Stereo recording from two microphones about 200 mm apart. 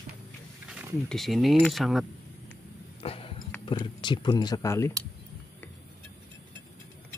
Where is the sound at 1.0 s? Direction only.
Centre (ahead or behind).